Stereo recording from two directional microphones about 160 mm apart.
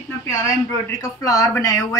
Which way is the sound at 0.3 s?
20° left (ahead or behind).